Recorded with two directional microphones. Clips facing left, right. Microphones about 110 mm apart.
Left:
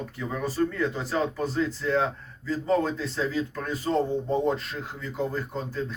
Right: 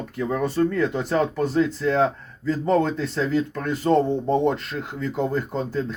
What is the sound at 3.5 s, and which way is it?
Speech, 70° right (ahead or behind).